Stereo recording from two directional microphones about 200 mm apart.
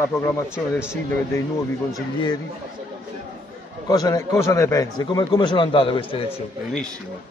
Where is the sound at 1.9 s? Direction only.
20° left (ahead or behind).